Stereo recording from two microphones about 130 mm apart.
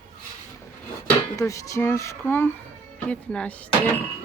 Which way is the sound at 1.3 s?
25° left (ahead or behind).